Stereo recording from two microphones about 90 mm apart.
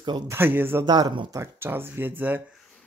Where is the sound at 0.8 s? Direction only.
55° right (ahead or behind).